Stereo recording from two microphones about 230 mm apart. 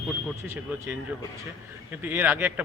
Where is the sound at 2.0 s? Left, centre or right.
Centre.